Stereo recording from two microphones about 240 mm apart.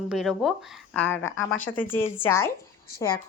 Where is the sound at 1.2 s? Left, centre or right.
Left.